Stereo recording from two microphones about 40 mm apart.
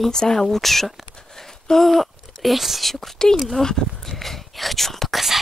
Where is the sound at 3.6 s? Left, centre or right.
Centre.